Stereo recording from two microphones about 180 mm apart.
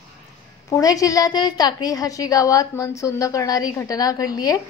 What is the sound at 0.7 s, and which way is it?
A woman's voice, 20° left (ahead or behind).